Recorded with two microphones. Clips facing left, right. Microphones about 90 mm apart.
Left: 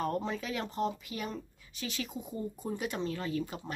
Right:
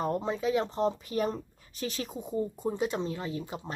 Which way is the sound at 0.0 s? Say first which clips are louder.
Right 4 dB; 20° right (ahead or behind).